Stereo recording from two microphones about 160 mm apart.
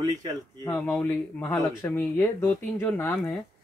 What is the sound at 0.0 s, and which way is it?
Speech, 20° right (ahead or behind).